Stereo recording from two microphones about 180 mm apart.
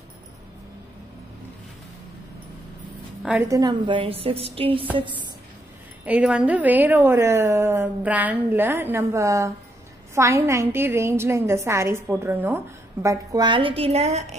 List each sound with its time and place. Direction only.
3.2 s a woman's voice: centre (ahead or behind)
3.4 s a woman's voice: 20° right (ahead or behind)
6.0 s a woman's voice: 5° right (ahead or behind); by 14.3 s 35° right (ahead or behind)